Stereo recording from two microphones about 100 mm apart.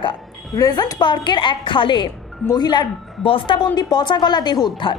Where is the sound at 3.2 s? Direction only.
65° left (ahead or behind).